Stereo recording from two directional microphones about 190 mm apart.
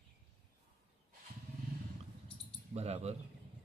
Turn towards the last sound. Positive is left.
turn(degrees=-35)  # may be behind; listen again after turning